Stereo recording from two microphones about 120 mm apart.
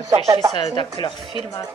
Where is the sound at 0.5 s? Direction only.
45° left (ahead or behind).